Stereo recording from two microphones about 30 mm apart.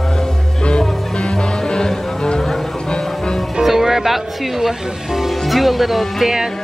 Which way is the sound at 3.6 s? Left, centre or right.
Centre.